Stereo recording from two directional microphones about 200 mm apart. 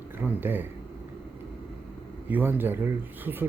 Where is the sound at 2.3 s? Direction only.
10° right (ahead or behind).